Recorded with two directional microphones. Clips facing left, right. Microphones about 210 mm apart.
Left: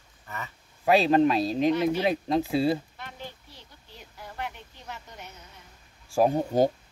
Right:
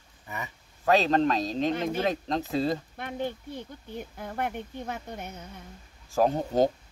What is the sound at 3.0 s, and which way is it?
Speech, 55° right (ahead or behind).